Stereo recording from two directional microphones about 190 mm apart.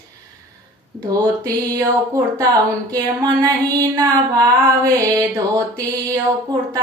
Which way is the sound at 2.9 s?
20° right (ahead or behind).